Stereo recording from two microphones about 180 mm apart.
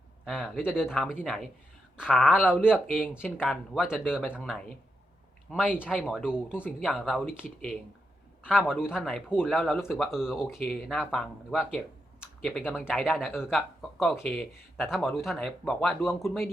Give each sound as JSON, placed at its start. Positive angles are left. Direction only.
{"t": 0.3, "sound": "speech", "side_deg": -5}
{"t": 2.9, "sound": "speech", "side_deg": 10}
{"t": 6.7, "sound": "speech", "side_deg": 5}
{"t": 8.5, "sound": "speech", "side_deg": -5}
{"t": 9.8, "sound": "speech", "side_deg": 10}
{"t": 10.1, "sound": "speech", "side_deg": -5}